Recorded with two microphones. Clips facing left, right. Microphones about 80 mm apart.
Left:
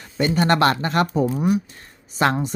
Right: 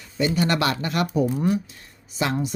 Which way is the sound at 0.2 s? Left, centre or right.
Left.